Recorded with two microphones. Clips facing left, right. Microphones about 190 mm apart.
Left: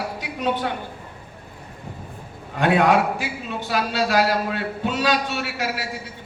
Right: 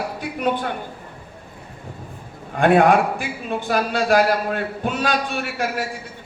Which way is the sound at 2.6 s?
50° right (ahead or behind).